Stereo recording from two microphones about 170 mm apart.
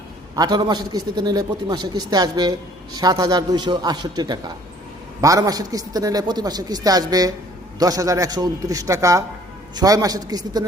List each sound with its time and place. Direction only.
0.3 s a man's voice: 25° right (ahead or behind)